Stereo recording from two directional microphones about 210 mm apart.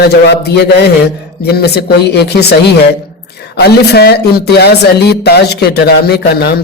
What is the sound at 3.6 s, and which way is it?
Speech, 50° left (ahead or behind).